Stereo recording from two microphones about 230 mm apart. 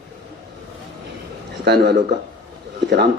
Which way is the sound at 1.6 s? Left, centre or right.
Right.